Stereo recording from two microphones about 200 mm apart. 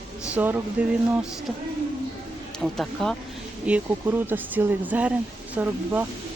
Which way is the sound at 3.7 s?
10° right (ahead or behind).